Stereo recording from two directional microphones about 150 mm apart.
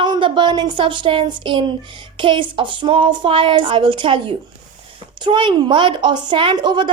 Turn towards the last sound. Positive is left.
turn(degrees=-30)  # may be behind; listen again after turning